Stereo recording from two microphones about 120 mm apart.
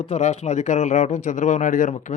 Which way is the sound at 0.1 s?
65° left (ahead or behind).